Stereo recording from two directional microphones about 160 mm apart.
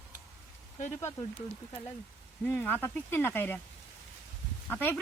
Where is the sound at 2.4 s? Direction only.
10° left (ahead or behind).